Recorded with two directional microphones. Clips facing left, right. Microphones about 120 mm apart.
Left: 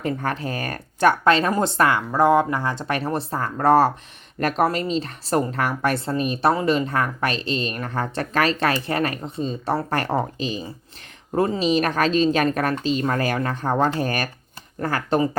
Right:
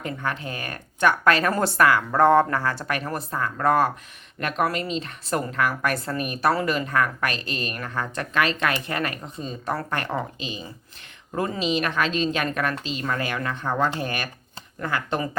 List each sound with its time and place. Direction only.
0.0 s a woman's voice: 35° left (ahead or behind)
2.1 s speech: 10° left (ahead or behind)
2.8 s a woman's voice: 30° left (ahead or behind)